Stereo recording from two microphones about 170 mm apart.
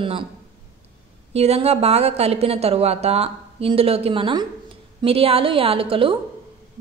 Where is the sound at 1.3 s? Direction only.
35° right (ahead or behind).